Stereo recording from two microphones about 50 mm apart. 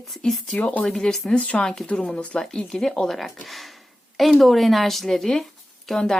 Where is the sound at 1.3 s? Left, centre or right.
Left.